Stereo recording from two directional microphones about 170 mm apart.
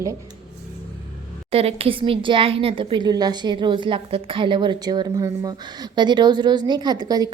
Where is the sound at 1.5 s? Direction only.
35° right (ahead or behind).